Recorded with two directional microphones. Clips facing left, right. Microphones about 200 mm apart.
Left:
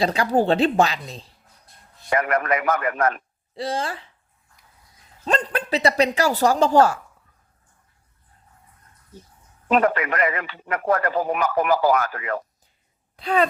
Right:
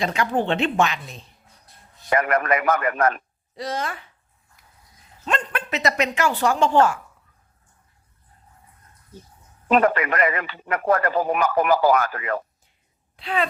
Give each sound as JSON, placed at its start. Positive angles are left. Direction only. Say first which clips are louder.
{"t": 0.0, "sound": "speech", "louder": "left 3 dB", "side_deg": 35}
{"t": 2.1, "sound": "a man's voice", "louder": "right 1 dB", "side_deg": -60}
{"t": 3.5, "sound": "speech", "louder": "left 2 dB", "side_deg": 30}
{"t": 5.2, "sound": "speech", "louder": "left 3 dB", "side_deg": 35}
{"t": 9.6, "sound": "a man's voice", "louder": "right 1 dB", "side_deg": -60}
{"t": 13.1, "sound": "speech", "louder": "left 4 dB", "side_deg": 40}